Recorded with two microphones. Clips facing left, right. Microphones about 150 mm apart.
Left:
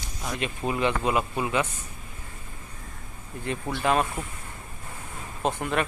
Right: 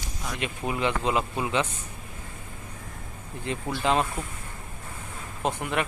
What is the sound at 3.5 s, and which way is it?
Speech, 20° right (ahead or behind).